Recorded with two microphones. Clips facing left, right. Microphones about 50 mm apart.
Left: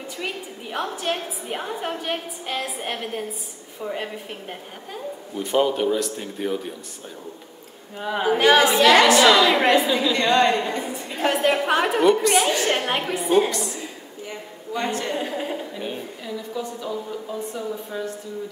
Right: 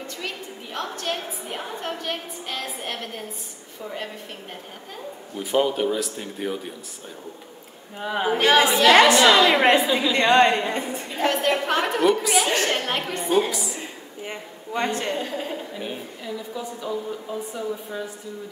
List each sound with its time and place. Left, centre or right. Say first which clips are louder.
0.2 s a sound: left 5 dB; centre
0.9 s a woman's voice: left 2 dB; centre
5.3 s a woman's voice: left 1 dB; centre
8.0 s a woman's voice: left 2 dB; centre
8.9 s a woman's voice: right 1 dB; centre
10.1 s a woman's voice: right 3 dB; right
10.7 s a woman's voice: even; right
11.2 s a woman's voice: left 2 dB; centre
13.7 s a sound: even; right
15.1 s a woman's voice: left 2 dB; centre